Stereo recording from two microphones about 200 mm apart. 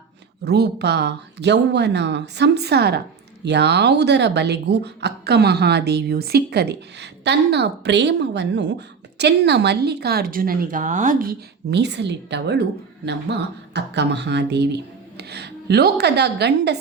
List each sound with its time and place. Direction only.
0.4 s speech: 55° right (ahead or behind)